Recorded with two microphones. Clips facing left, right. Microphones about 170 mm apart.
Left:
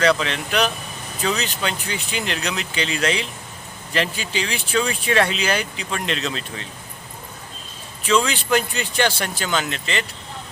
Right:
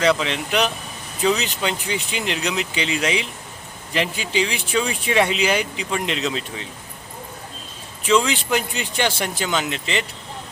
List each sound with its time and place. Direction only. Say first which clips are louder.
0.0 s speech: even; 20° right (ahead or behind)
8.0 s speech: right 1 dB; 15° right (ahead or behind)